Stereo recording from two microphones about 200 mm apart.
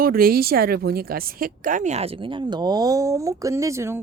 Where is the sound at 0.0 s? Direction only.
45° right (ahead or behind).